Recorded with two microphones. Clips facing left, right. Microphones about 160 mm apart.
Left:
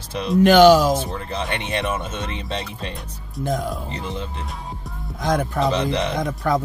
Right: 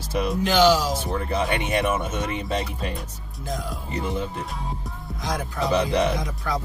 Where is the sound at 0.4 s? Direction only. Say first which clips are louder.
Left 8 dB; 60° left (ahead or behind).